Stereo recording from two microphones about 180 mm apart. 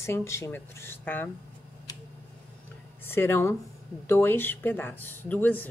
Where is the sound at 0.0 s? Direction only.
15° left (ahead or behind).